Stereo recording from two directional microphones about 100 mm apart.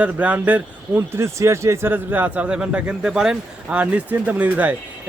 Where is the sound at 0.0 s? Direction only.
15° right (ahead or behind).